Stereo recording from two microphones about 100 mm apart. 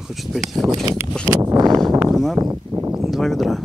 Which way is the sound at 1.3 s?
30° right (ahead or behind).